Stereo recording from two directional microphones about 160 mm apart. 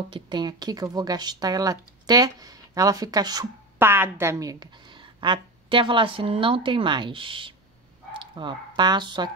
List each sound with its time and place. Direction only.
0.1 s speech: 30° right (ahead or behind)
3.7 s a woman's voice: 15° right (ahead or behind)